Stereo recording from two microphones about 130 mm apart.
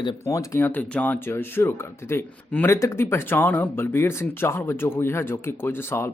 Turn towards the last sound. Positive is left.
turn(degrees=20)  # may be behind; listen again after turning